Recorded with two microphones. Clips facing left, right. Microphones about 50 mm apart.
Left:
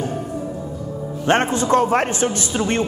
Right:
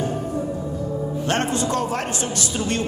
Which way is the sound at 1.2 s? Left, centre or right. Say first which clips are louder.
Left 6 dB; left.